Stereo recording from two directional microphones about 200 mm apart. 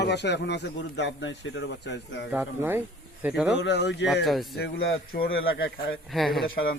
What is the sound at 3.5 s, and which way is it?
Speech, 60° left (ahead or behind).